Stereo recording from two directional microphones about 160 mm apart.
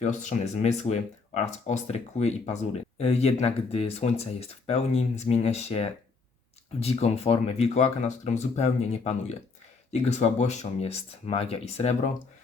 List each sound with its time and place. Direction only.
0.0 s speech: 50° left (ahead or behind)